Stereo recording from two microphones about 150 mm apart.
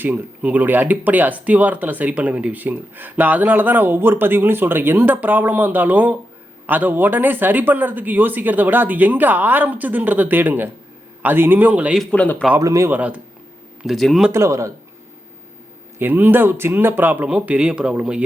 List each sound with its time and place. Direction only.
0.0 s speech: 10° right (ahead or behind)
12.1 s speech: 10° left (ahead or behind)
12.5 s speech: 20° right (ahead or behind); by 14.3 s centre (ahead or behind)
14.3 s a man's voice: 20° right (ahead or behind)
16.0 s speech: 15° right (ahead or behind)